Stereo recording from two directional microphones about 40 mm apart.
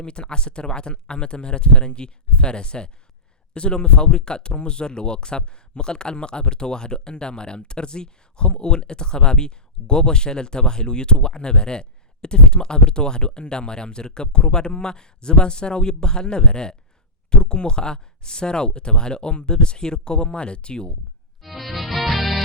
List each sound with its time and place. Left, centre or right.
0.0 s speech: left
21.4 s music: centre